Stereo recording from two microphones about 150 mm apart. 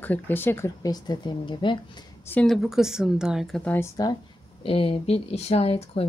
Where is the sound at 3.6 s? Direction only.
10° left (ahead or behind).